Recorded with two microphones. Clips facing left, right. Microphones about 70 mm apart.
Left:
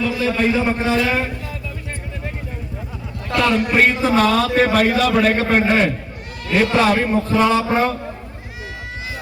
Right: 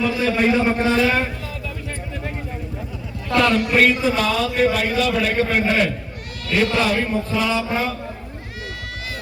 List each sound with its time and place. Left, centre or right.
0.3 s a man's voice: centre
0.6 s a man's voice: centre
3.3 s a man's voice: centre
3.6 s a man's voice: left
4.0 s a man's voice: left
5.1 s a sound: left
6.6 s a man's voice: left
7.0 s a sound: left